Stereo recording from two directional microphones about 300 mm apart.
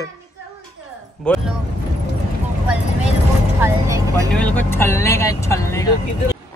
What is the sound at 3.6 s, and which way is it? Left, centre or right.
Vehicle, centre.